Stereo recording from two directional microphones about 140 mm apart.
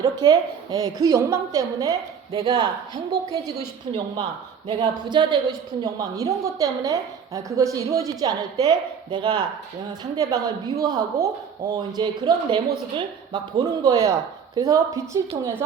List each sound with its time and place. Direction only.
0.0 s a woman's voice: 30° right (ahead or behind)
4.7 s a woman's voice: 35° right (ahead or behind)